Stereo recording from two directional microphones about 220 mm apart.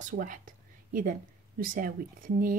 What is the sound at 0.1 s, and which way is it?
A woman's voice, 40° right (ahead or behind).